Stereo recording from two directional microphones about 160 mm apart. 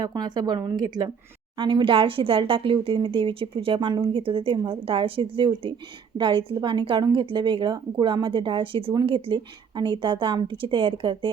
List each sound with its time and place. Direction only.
0.0 s a woman's voice: 25° right (ahead or behind)